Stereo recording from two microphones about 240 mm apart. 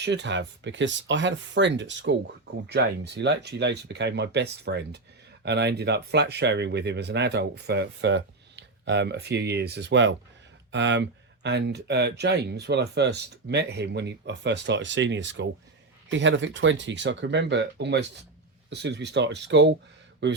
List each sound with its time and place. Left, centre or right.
0.0 s speech: right